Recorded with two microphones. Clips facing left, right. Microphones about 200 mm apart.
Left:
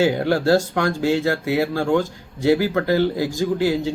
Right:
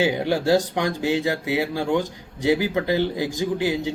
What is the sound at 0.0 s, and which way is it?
Speech, 15° right (ahead or behind).